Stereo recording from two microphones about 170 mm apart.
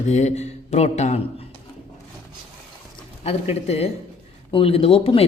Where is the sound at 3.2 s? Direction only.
40° left (ahead or behind).